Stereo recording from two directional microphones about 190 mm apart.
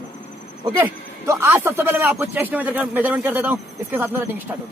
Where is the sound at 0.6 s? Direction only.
20° right (ahead or behind).